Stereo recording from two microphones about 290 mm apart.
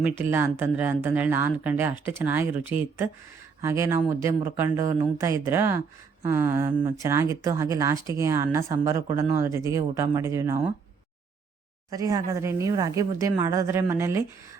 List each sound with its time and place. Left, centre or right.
0.2 s speech: centre
3.6 s speech: centre
11.9 s speech: centre